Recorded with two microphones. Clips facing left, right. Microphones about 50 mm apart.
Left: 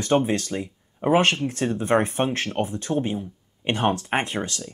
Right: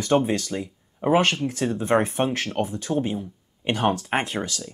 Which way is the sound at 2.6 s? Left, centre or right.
Left.